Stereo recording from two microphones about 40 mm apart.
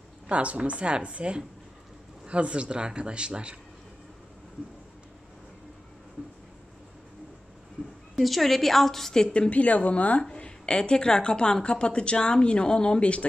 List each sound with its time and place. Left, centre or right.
0.3 s speech: right
8.2 s a woman's voice: centre
9.2 s a woman's voice: left
9.5 s a woman's voice: left
10.3 s a woman's voice: left